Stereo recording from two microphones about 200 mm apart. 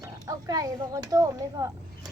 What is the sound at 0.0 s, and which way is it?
Speech, 15° right (ahead or behind).